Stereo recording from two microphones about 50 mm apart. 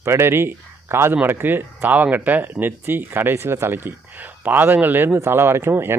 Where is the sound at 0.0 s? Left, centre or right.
Right.